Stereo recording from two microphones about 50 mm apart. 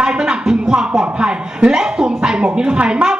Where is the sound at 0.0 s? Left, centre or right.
Centre.